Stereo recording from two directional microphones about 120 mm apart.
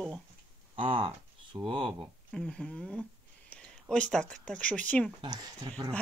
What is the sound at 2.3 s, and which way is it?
Speech, 5° left (ahead or behind).